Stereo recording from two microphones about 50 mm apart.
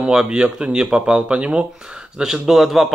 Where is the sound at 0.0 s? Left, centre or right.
Centre.